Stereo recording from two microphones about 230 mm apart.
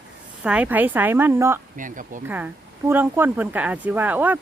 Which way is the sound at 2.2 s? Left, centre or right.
Centre.